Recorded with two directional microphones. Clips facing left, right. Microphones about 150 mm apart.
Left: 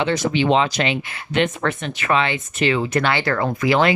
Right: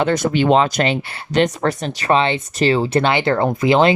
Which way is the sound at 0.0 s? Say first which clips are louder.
Right 3 dB; 50° right (ahead or behind).